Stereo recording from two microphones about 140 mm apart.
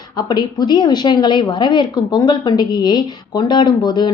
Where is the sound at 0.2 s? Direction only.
30° left (ahead or behind).